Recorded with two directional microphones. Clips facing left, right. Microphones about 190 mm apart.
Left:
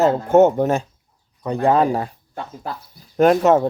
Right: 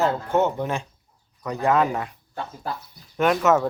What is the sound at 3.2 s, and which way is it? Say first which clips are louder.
Speech: left 6 dB; 35° left (ahead or behind).